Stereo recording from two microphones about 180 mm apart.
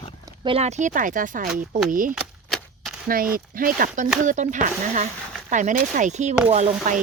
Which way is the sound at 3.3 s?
50° right (ahead or behind).